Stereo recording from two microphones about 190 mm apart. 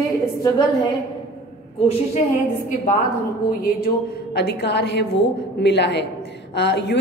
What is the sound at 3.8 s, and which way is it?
A woman's voice, 60° left (ahead or behind).